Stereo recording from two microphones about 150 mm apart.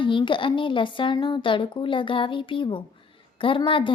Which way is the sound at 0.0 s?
35° left (ahead or behind).